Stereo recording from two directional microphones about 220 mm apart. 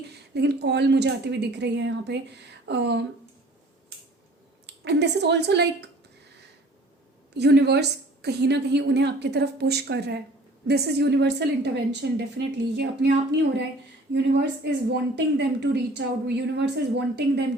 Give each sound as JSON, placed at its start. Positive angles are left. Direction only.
{"t": 0.1, "sound": "a woman's voice", "side_deg": -50}
{"t": 4.6, "sound": "speech", "side_deg": -50}
{"t": 7.3, "sound": "a woman's voice", "side_deg": -50}